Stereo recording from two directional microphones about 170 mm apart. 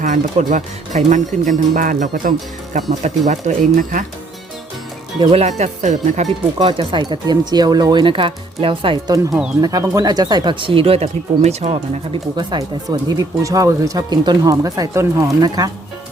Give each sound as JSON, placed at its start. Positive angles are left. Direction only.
{"t": 0.0, "sound": "speech", "side_deg": -45}
{"t": 5.2, "sound": "speech", "side_deg": -40}
{"t": 6.6, "sound": "speech", "side_deg": -30}
{"t": 12.4, "sound": "speech", "side_deg": -25}